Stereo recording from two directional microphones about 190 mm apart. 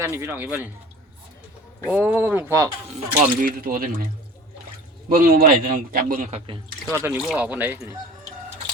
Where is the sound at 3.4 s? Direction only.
45° right (ahead or behind).